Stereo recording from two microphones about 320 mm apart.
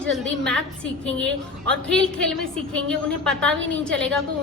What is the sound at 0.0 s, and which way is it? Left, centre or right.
Speech, centre.